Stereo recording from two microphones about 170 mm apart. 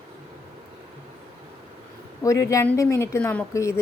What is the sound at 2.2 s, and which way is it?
A woman's voice, 20° left (ahead or behind).